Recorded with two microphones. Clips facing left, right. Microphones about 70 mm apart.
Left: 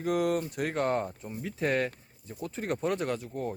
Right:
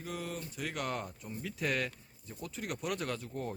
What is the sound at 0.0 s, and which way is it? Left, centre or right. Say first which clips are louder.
Speech: left 13 dB; left.